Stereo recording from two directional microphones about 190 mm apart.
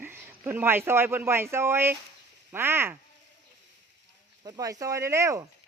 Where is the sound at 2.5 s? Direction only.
10° right (ahead or behind).